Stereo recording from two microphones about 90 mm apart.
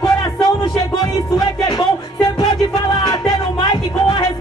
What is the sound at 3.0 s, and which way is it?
Music, 50° left (ahead or behind).